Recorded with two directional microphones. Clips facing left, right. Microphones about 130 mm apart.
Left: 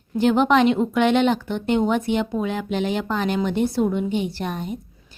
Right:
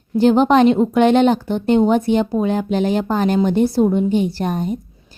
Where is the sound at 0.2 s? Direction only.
35° right (ahead or behind).